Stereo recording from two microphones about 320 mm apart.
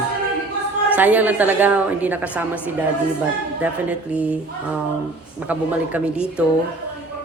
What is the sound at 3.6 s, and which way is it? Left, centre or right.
A woman's voice, centre.